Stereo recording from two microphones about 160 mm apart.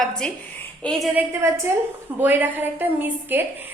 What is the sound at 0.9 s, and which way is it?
Speech, centre (ahead or behind).